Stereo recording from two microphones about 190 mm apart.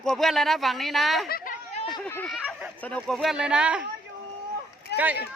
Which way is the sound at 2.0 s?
10° left (ahead or behind).